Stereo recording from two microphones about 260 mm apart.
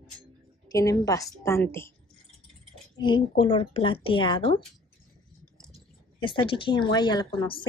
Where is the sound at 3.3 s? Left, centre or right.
Left.